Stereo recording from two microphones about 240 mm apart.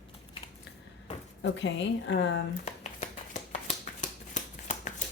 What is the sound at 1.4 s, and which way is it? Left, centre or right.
Speech, left.